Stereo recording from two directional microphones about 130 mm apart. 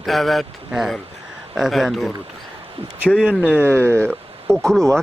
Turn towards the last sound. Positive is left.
turn(degrees=5)  # may be behind; listen again after turning